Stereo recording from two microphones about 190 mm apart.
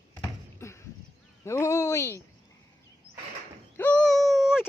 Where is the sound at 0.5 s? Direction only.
15° left (ahead or behind).